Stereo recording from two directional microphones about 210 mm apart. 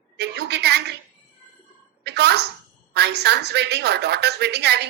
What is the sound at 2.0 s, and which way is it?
A woman's voice, 50° right (ahead or behind).